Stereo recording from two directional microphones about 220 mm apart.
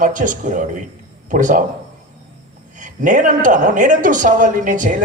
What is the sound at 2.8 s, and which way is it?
A woman's voice, 35° right (ahead or behind).